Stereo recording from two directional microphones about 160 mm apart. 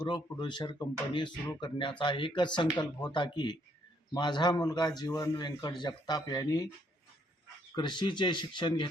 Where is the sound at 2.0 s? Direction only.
30° left (ahead or behind).